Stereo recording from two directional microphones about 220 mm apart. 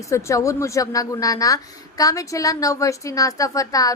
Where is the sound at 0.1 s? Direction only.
15° left (ahead or behind).